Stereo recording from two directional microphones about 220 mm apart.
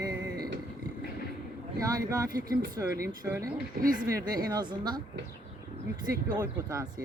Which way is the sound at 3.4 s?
40° right (ahead or behind).